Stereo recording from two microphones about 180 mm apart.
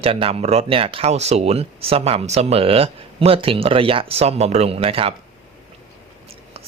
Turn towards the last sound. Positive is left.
turn(degrees=-30)  # may be behind; listen again after turning